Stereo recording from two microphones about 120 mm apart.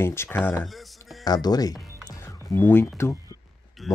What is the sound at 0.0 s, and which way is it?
Speech, 20° left (ahead or behind).